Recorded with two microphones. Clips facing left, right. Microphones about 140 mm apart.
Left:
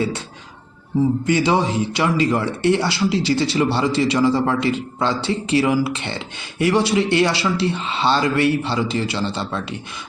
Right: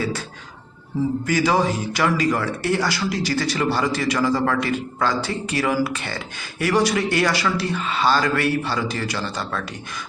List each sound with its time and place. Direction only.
1.2 s a man's voice: 25° left (ahead or behind)